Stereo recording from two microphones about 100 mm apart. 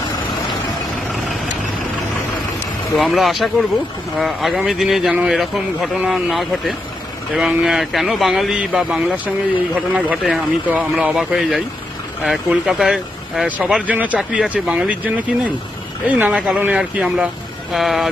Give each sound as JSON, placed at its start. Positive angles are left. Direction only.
{"t": 2.9, "sound": "a man's voice", "side_deg": 0}
{"t": 13.8, "sound": "a man's voice", "side_deg": -15}
{"t": 14.2, "sound": "speech", "side_deg": 0}
{"t": 14.5, "sound": "a man's voice", "side_deg": -10}